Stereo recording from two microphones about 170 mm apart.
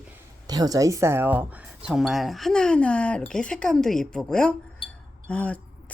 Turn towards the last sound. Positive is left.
turn(degrees=5)  # may be behind; listen again after turning